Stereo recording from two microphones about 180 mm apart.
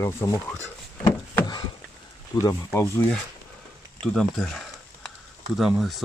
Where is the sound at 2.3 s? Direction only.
20° left (ahead or behind).